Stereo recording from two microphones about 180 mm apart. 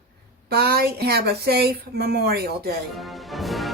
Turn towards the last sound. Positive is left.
turn(degrees=0)  # may be behind; listen again after turning